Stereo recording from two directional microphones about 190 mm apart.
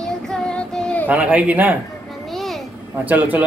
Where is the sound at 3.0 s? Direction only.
10° right (ahead or behind).